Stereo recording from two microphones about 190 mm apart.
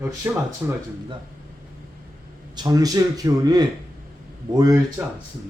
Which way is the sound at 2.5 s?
20° right (ahead or behind).